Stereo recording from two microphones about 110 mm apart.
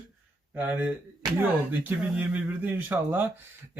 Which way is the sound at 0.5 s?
15° right (ahead or behind).